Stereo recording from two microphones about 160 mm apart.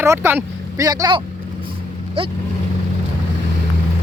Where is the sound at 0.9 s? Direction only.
25° right (ahead or behind).